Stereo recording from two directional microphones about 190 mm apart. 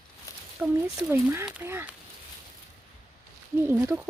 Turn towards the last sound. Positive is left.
turn(degrees=-10)  # may be behind; listen again after turning